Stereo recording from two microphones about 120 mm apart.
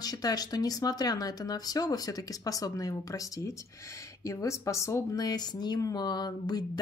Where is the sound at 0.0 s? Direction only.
35° left (ahead or behind).